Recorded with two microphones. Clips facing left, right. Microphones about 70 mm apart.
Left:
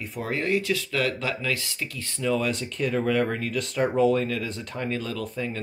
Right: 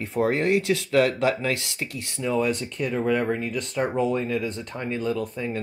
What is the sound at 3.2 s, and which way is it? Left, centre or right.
Speech, centre.